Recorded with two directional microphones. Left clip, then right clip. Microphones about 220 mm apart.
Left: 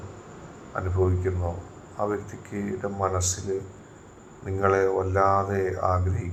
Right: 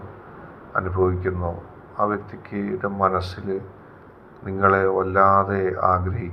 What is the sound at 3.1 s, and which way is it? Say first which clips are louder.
Speech: right 3 dB; 20° left (ahead or behind).